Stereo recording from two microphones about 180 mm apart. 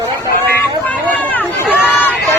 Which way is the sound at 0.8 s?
10° left (ahead or behind).